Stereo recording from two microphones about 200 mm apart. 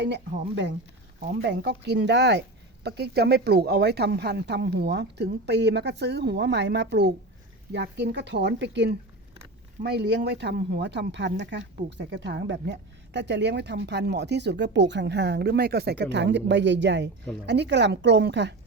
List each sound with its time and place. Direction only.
0.0 s a woman's voice: 60° right (ahead or behind)